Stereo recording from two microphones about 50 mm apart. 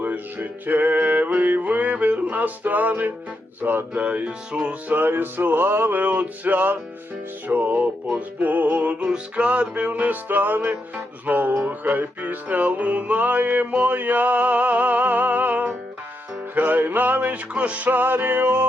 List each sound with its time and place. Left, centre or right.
0.0 s music: right
4.9 s music: right
5.9 s music: right